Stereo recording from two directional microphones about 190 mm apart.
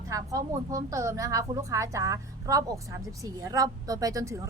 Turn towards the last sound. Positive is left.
turn(degrees=-15)  # may be behind; listen again after turning